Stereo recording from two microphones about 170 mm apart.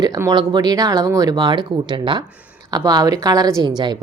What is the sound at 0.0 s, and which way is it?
Speech, 20° right (ahead or behind).